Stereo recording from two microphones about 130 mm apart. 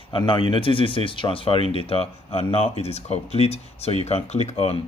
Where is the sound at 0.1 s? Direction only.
40° left (ahead or behind).